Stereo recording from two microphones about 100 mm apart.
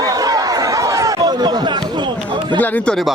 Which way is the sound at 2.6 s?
15° left (ahead or behind).